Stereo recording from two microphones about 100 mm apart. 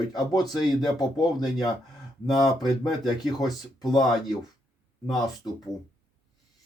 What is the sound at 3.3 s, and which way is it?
Speech, 40° left (ahead or behind).